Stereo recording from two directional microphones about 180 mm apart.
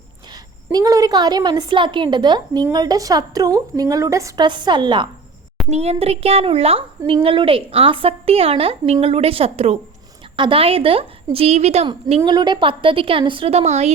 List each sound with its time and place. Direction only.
0.7 s a woman's voice: 20° right (ahead or behind)
5.7 s a woman's voice: 35° right (ahead or behind)